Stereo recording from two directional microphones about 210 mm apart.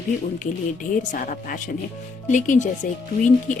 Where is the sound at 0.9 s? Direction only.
35° left (ahead or behind).